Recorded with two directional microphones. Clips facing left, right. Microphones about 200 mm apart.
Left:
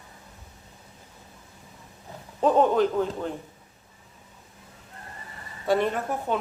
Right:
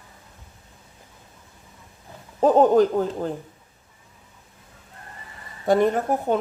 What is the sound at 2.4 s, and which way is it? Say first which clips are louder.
Speech: right 5 dB; 40° right (ahead or behind).